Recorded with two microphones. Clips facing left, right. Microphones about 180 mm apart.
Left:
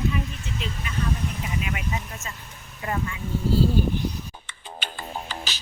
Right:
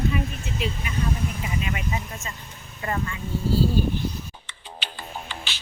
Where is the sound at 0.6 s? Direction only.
10° right (ahead or behind).